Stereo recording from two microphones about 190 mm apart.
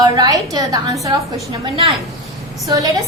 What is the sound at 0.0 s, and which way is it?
A woman's voice, 20° right (ahead or behind).